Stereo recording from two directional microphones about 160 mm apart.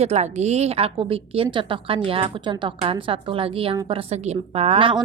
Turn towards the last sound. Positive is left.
turn(degrees=-35)  # may be behind; listen again after turning